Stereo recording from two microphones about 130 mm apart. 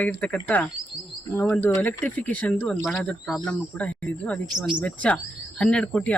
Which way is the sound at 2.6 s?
Centre (ahead or behind).